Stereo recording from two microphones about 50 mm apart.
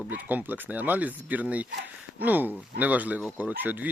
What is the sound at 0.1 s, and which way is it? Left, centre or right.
Speech, right.